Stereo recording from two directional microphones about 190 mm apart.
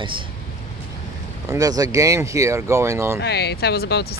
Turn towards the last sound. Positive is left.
turn(degrees=60)  # may be behind; listen again after turning